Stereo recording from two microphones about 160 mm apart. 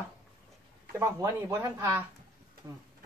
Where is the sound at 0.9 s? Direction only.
15° right (ahead or behind).